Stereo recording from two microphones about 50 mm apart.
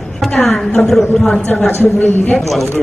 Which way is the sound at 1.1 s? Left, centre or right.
Centre.